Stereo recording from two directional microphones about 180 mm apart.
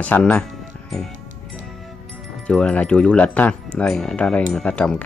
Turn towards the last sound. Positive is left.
turn(degrees=5)  # may be behind; listen again after turning